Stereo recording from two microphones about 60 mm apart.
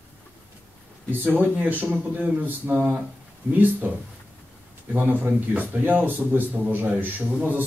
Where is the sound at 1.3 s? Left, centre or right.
Right.